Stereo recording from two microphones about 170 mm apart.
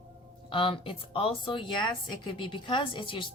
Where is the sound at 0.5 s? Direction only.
30° left (ahead or behind).